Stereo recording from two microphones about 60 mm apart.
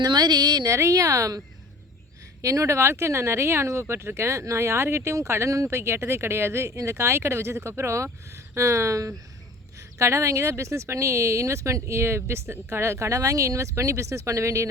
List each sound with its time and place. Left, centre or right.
0.5 s a woman's voice: right
0.8 s a woman's voice: right
2.4 s speech: right
6.7 s speech: right
6.9 s speech: right